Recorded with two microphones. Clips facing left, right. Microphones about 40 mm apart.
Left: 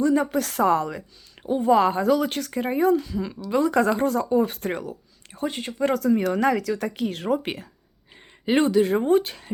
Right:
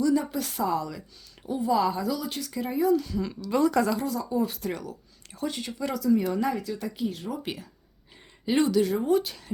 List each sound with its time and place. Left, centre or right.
0.0 s speech: left
0.9 s speech: left
3.0 s a woman's voice: left
3.7 s speech: left
4.0 s speech: left
4.8 s speech: left
6.2 s speech: left
7.3 s speech: left